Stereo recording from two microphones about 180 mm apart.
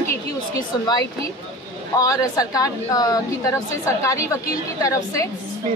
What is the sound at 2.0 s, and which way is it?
A woman's voice, 20° left (ahead or behind).